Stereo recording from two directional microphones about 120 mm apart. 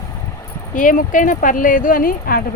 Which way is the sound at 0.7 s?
90° left.